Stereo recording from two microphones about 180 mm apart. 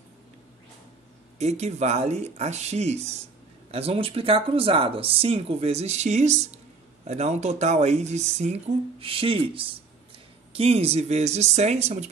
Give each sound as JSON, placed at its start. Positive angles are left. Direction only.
{"t": 1.4, "sound": "speech", "side_deg": -40}